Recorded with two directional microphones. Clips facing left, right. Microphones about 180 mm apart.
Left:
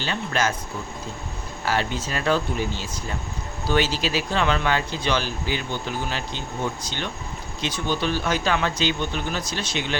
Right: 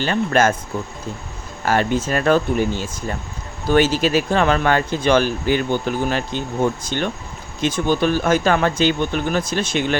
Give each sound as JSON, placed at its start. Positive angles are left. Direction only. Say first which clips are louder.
{"t": 0.0, "sound": "speech", "louder": "right 8 dB", "side_deg": -50}
{"t": 1.6, "sound": "speech", "louder": "right 7 dB", "side_deg": -50}